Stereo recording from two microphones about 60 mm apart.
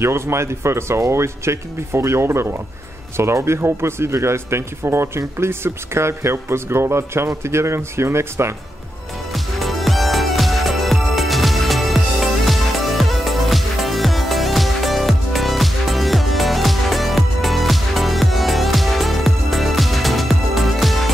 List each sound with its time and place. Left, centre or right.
0.0 s speech: right
9.3 s music: centre